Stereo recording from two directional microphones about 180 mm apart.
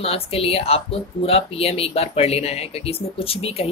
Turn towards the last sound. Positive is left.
turn(degrees=35)  # may be behind; listen again after turning